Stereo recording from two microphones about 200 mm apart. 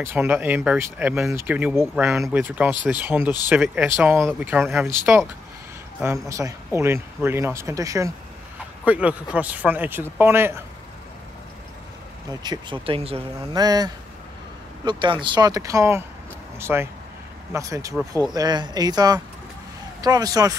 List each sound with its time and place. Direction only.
0.0 s speech: 10° right (ahead or behind)
6.2 s speech: 15° right (ahead or behind)
12.3 s speech: 20° right (ahead or behind)